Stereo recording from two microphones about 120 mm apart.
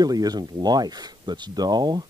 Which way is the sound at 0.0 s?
30° right (ahead or behind).